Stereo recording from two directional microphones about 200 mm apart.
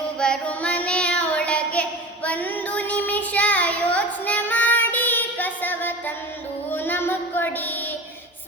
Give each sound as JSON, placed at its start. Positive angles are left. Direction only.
{"t": 0.2, "sound": "child singing", "side_deg": 5}
{"t": 6.7, "sound": "music", "side_deg": 10}